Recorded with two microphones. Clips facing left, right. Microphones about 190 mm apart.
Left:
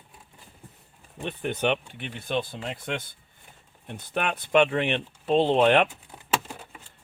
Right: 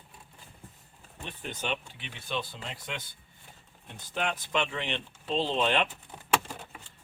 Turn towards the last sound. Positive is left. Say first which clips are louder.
# even
turn(degrees=0)  # may be behind; listen again after turning